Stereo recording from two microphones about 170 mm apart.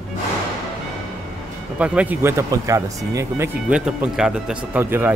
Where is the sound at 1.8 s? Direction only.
10° right (ahead or behind).